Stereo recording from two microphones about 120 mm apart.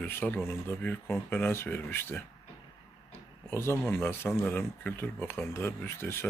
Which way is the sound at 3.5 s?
20° left (ahead or behind).